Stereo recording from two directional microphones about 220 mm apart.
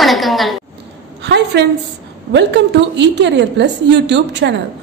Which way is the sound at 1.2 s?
50° right (ahead or behind).